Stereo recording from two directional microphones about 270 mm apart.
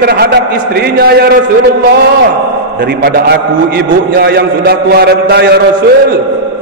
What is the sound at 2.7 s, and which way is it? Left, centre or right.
A man's voice, right.